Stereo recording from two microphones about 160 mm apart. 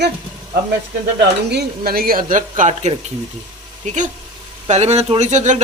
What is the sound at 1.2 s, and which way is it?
Speech, 90° right.